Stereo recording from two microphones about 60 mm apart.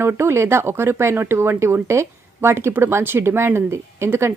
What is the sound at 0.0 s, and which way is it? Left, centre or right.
Speech, right.